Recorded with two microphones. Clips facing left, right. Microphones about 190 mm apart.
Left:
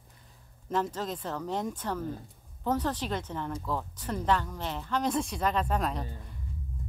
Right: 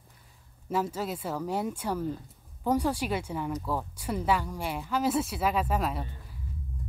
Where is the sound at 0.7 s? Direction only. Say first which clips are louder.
Right 1 dB; 10° right (ahead or behind).